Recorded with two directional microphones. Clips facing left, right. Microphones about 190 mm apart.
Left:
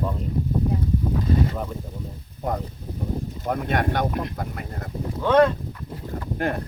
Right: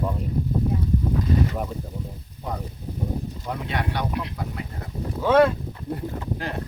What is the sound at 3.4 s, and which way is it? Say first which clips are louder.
Speech: left 6 dB; 50° left (ahead or behind).